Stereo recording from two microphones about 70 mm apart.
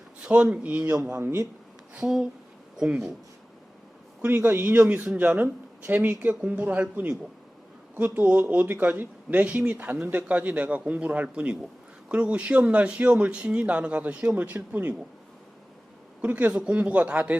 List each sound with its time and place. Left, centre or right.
0.2 s speech: centre
1.2 s a man's voice: right
2.0 s speech: centre
4.3 s speech: right
16.2 s speech: right